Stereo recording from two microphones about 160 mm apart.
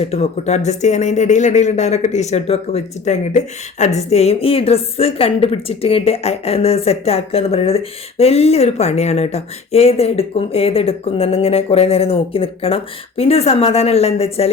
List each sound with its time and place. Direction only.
0.0 s speech: 40° left (ahead or behind)